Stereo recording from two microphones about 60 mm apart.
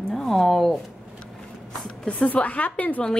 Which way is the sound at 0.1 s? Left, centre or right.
Centre.